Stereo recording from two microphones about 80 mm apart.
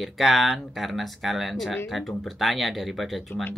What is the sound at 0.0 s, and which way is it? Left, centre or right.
Speech, centre.